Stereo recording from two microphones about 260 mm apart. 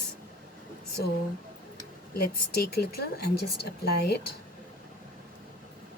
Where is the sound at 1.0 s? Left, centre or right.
Left.